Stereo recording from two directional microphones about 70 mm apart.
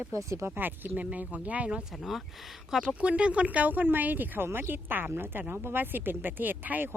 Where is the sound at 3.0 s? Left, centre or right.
Centre.